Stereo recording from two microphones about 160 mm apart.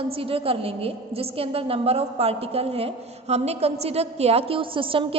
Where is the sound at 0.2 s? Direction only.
35° right (ahead or behind).